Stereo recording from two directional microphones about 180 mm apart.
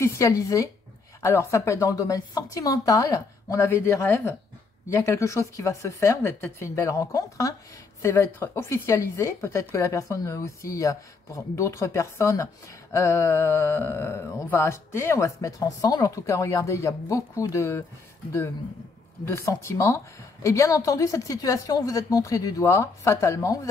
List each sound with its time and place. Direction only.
0.0 s a woman's voice: 15° left (ahead or behind)
19.2 s a woman's voice: 15° left (ahead or behind)